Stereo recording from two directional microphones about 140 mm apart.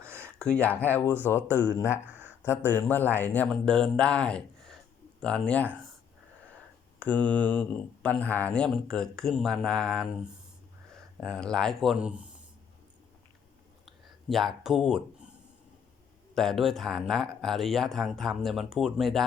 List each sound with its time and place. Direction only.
0.0 s a sound: 15° right (ahead or behind)
0.3 s speech: 5° left (ahead or behind)
1.5 s speech: 15° right (ahead or behind)
2.0 s a sound: 10° right (ahead or behind)
2.5 s speech: 15° left (ahead or behind)
7.0 s speech: 10° left (ahead or behind)
11.2 s speech: 5° left (ahead or behind)
13.8 s speech: centre (ahead or behind)
16.3 s speech: 5° left (ahead or behind)